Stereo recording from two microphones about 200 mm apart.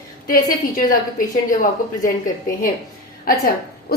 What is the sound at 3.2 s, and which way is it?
Speech, 45° left (ahead or behind).